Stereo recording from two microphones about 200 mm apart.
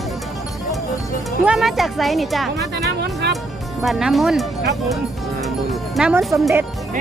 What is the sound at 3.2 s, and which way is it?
Music, 60° right (ahead or behind).